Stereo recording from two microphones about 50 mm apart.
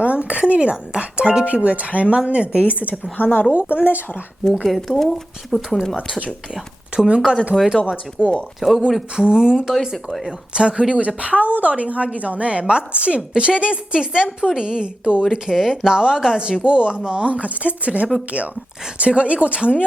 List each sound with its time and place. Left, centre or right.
0.0 s a woman's voice: right
3.2 s speech: left
3.5 s a woman's voice: right
4.6 s speech: centre
6.9 s speech: right
8.2 s speech: left
8.6 s speech: centre
10.1 s a woman's voice: centre
10.5 s a woman's voice: centre